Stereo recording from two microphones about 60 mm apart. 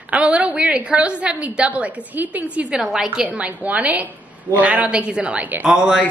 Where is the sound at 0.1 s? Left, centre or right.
Centre.